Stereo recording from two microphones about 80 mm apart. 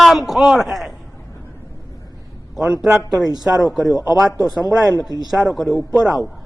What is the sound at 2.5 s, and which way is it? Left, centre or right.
A man's voice, centre.